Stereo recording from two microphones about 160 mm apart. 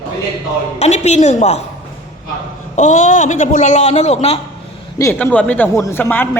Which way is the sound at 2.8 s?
50° left (ahead or behind).